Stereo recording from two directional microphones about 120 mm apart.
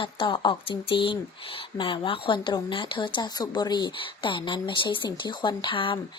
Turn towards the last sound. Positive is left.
turn(degrees=45)  # may be behind; listen again after turning